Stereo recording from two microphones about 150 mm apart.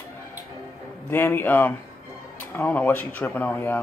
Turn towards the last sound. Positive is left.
turn(degrees=15)  # may be behind; listen again after turning